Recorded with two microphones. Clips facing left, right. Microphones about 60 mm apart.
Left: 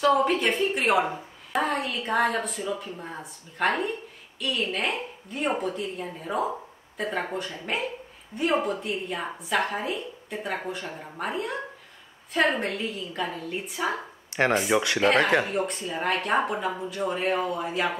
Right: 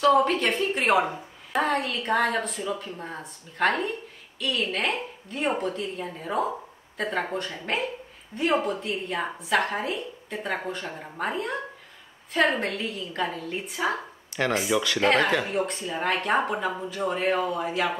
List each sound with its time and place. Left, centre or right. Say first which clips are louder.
0.0 s a woman's voice: right 1 dB; centre
14.7 s speech: left 1 dB; left
15.0 s a woman's voice: even; centre